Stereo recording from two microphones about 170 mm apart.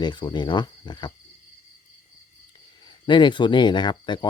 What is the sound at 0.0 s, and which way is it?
Speech, 25° left (ahead or behind).